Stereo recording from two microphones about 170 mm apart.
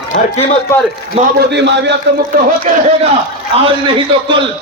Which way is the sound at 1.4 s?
90° right.